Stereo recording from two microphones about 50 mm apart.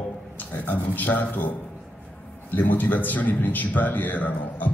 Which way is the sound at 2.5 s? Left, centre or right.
Left.